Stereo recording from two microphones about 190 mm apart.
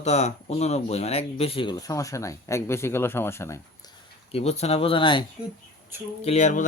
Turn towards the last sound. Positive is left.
turn(degrees=40)  # may be behind; listen again after turning